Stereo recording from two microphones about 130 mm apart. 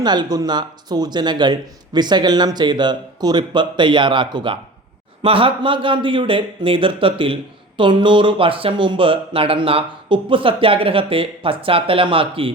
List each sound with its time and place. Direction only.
0.0 s speech: 35° right (ahead or behind)